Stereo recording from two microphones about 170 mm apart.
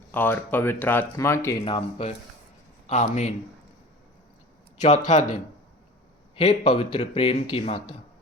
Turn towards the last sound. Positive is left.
turn(degrees=30)  # may be behind; listen again after turning